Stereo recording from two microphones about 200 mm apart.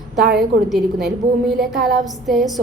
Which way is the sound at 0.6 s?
Centre (ahead or behind).